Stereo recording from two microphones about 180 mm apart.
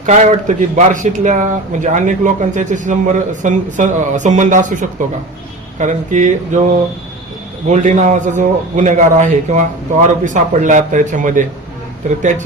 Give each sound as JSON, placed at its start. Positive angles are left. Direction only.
{"t": 0.0, "sound": "a man's voice", "side_deg": -40}
{"t": 7.7, "sound": "a man's voice", "side_deg": -45}